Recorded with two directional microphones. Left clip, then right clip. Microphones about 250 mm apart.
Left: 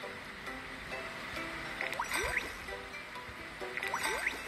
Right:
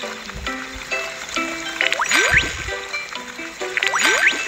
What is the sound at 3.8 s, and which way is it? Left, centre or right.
Music, right.